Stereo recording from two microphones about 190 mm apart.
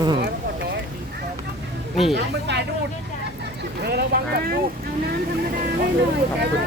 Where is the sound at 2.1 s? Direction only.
65° right (ahead or behind).